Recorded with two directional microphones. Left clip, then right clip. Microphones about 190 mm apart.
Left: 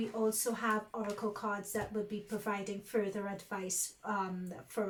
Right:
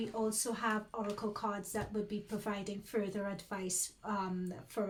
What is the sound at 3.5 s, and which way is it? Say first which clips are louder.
Speech: left 3 dB; 45° right (ahead or behind).